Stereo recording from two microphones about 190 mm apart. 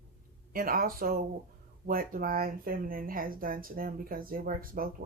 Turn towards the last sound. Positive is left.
turn(degrees=-50)  # may be behind; listen again after turning